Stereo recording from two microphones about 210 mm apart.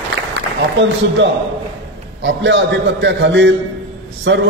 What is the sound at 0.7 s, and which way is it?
A man's voice, 60° right (ahead or behind).